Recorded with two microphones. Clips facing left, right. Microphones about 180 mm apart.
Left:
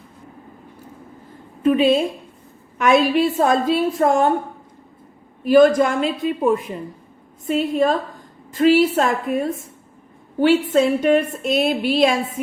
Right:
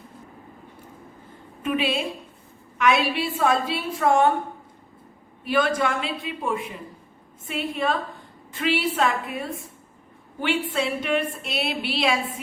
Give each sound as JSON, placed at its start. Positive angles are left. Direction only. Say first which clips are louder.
{"t": 1.6, "sound": "a woman's voice", "louder": "left 9 dB", "side_deg": 35}
{"t": 5.5, "sound": "a woman's voice", "louder": "left 10 dB", "side_deg": 40}